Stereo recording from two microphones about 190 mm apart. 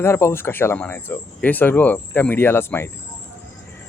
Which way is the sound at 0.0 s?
15° left (ahead or behind).